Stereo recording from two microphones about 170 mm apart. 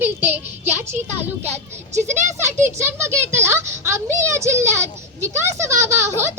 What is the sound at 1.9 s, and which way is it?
Speech, 45° right (ahead or behind).